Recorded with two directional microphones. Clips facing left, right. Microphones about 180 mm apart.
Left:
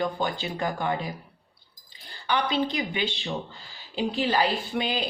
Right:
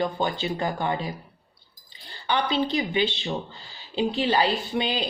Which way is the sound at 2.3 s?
30° right (ahead or behind).